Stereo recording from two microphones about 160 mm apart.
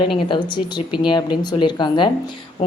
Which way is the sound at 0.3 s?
30° left (ahead or behind).